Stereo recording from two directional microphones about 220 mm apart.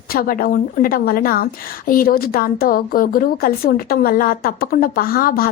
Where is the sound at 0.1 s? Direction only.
40° left (ahead or behind).